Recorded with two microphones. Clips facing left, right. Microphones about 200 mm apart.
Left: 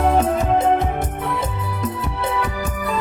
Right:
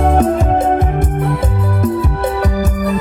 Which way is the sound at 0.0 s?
50° right (ahead or behind).